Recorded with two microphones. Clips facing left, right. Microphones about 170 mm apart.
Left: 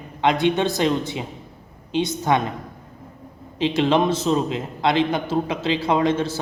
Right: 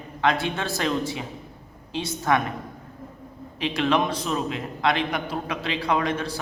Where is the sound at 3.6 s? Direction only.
25° left (ahead or behind).